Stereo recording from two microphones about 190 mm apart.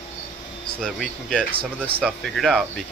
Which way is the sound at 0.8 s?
Centre (ahead or behind).